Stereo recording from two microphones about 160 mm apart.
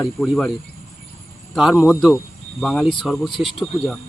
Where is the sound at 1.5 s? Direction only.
5° right (ahead or behind).